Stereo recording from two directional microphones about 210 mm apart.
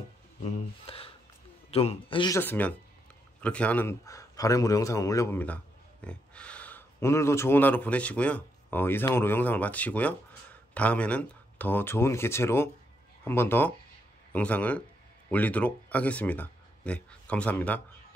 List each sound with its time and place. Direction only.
0.4 s a man's voice: 25° left (ahead or behind)
2.4 s a man's voice: 10° left (ahead or behind)